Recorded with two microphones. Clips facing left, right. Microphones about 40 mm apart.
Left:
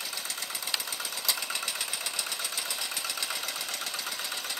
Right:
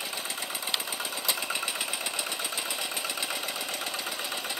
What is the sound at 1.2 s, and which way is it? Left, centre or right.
Engine, centre.